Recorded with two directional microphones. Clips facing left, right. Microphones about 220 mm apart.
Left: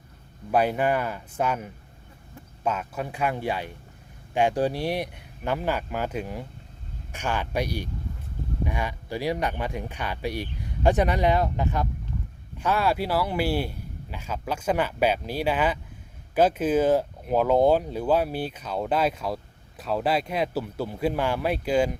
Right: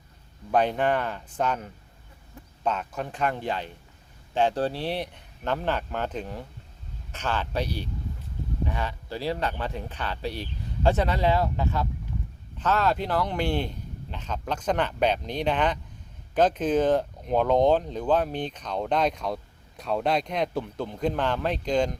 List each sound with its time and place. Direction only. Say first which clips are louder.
0.5 s speech: left 1 dB; 10° left (ahead or behind)